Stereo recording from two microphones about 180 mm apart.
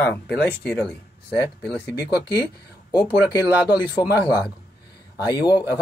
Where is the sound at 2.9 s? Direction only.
25° left (ahead or behind).